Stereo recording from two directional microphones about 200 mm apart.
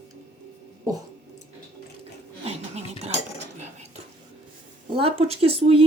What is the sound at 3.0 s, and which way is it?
Cutlery, 35° right (ahead or behind).